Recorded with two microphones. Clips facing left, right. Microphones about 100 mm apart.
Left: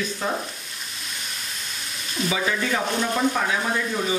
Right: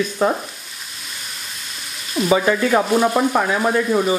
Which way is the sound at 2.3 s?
50° right (ahead or behind).